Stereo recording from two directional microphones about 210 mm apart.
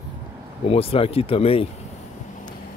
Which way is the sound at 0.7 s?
25° left (ahead or behind).